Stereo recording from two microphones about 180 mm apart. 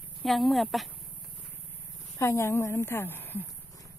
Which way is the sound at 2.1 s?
15° left (ahead or behind).